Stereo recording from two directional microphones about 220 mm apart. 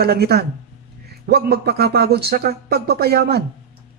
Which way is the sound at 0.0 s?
45° right (ahead or behind).